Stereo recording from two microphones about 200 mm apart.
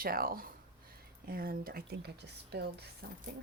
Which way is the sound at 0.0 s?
45° right (ahead or behind).